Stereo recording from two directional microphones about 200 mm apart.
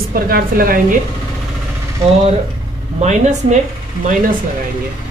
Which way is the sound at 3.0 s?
35° right (ahead or behind).